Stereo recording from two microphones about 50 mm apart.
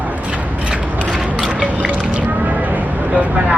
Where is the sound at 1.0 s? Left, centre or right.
Centre.